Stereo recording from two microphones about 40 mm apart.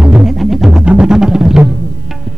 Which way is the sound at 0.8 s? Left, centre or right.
Right.